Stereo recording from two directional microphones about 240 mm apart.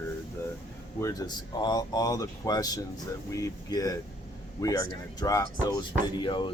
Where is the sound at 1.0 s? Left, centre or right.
Centre.